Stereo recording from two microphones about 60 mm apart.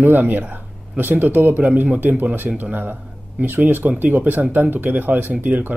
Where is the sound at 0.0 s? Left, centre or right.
Right.